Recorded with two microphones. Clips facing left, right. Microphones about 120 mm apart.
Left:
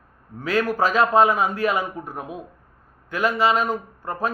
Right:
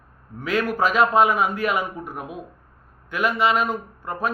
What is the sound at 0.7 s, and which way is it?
A man's voice, 35° left (ahead or behind).